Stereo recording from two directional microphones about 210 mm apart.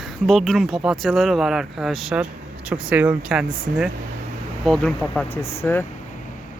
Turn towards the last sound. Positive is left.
turn(degrees=10)  # may be behind; listen again after turning